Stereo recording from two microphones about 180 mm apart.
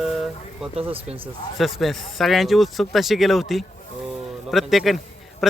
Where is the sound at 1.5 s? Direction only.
Centre (ahead or behind).